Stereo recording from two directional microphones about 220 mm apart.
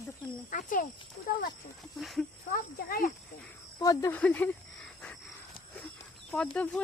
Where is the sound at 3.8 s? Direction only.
15° left (ahead or behind).